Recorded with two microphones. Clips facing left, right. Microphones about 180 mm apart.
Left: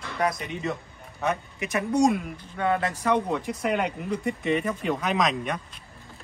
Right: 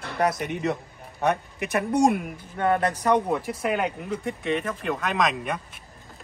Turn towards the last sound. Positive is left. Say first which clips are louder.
# even
turn(degrees=0)  # may be behind; listen again after turning